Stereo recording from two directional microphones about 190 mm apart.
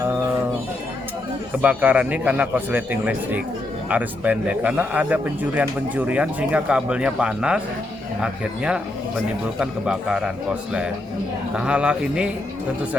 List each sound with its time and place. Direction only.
1.6 s a man's voice: 10° right (ahead or behind)